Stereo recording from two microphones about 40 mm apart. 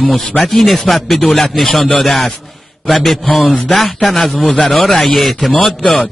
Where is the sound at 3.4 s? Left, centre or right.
Left.